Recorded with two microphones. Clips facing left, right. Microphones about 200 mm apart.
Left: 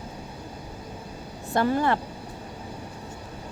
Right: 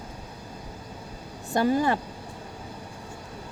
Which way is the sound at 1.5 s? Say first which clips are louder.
Even; 15° right (ahead or behind).